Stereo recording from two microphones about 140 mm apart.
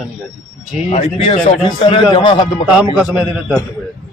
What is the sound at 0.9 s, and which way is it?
A man's voice, 45° left (ahead or behind).